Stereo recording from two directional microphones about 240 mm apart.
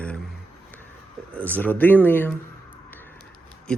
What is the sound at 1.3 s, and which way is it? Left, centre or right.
Speech, centre.